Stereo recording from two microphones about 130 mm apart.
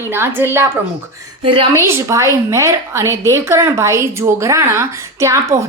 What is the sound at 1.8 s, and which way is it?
A woman's voice, 20° right (ahead or behind).